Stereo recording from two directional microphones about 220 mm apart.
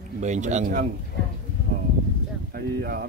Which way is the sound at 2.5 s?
45° right (ahead or behind).